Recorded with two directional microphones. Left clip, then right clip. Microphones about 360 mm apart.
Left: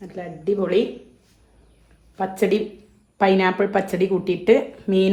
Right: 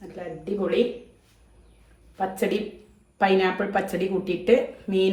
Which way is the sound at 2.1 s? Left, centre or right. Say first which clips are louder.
Left 5 dB; left.